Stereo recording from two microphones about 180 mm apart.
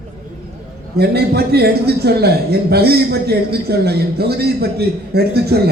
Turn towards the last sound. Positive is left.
turn(degrees=-60)  # may be behind; listen again after turning